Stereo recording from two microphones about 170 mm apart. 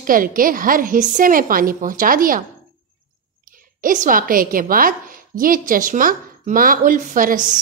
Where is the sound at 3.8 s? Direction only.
50° right (ahead or behind).